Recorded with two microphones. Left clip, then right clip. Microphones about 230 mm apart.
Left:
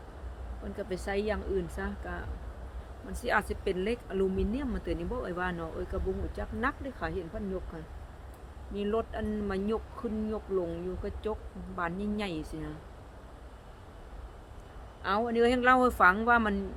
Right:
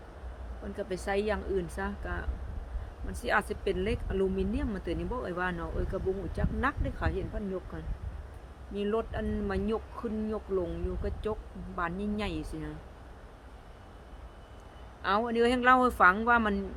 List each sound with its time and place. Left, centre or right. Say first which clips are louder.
0.8 s speech: right 2 dB; centre
8.7 s speech: even; centre
15.0 s speech: even; centre